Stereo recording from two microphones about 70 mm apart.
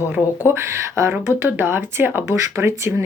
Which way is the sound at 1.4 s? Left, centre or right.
Right.